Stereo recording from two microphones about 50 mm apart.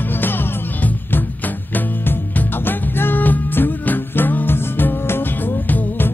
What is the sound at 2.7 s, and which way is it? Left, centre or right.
Music, left.